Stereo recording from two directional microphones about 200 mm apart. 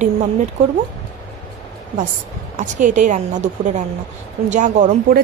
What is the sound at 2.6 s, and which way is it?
A woman's voice, 40° right (ahead or behind).